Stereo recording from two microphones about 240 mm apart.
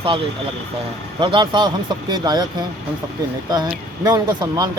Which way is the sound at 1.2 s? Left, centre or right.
Centre.